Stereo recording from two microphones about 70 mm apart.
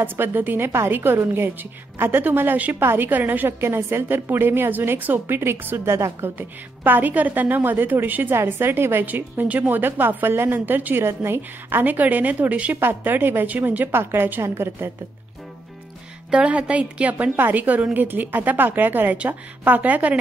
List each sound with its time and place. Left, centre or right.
0.0 s a woman's voice: right
6.3 s a woman's voice: right
16.3 s a woman's voice: centre